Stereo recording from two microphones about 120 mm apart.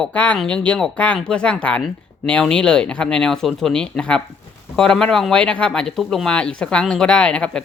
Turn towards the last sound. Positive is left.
turn(degrees=10)  # may be behind; listen again after turning